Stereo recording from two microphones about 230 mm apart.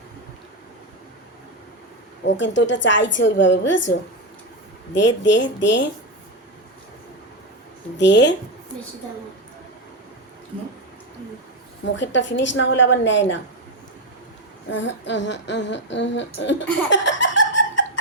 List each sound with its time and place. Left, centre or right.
2.2 s a woman's voice: left
4.9 s a woman's voice: left
7.9 s a woman's voice: left
11.9 s a woman's voice: left
14.7 s a woman's voice: left
16.9 s laughter: left